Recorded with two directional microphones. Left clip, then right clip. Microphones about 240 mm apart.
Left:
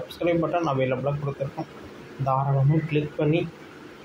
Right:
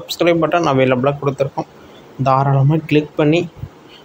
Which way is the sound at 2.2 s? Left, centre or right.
Right.